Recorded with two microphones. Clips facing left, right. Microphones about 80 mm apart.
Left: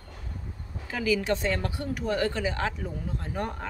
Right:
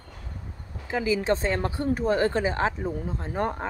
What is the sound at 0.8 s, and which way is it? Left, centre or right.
A woman's voice, right.